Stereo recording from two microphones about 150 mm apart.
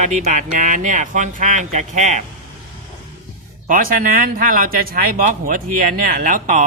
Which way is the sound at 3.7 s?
65° right (ahead or behind).